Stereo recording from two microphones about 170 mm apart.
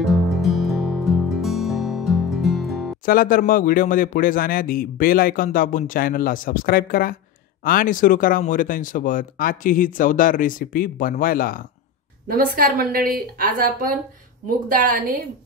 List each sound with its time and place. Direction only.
0.0 s music: centre (ahead or behind)
3.1 s a man's voice: 55° left (ahead or behind)
12.3 s a woman's voice: 55° right (ahead or behind)